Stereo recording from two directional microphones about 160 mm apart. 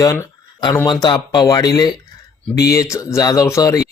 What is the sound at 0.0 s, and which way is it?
Speech, 20° left (ahead or behind).